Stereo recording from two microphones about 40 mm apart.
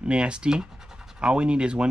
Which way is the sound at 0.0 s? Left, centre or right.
Right.